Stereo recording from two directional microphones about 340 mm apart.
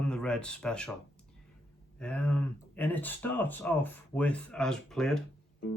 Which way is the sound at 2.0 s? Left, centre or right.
Centre.